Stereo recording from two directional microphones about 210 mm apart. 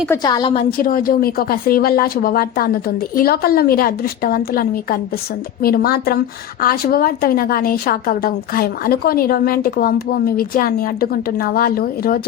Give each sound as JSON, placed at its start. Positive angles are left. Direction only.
{"t": 0.1, "sound": "a woman's voice", "side_deg": 20}
{"t": 0.8, "sound": "a woman's voice", "side_deg": 45}